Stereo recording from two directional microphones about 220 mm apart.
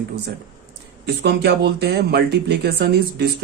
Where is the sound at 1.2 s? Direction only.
45° right (ahead or behind).